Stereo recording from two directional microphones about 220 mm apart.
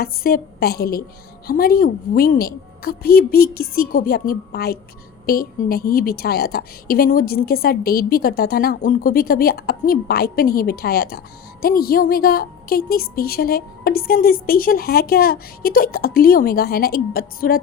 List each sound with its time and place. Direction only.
0.0 s a woman's voice: 40° left (ahead or behind)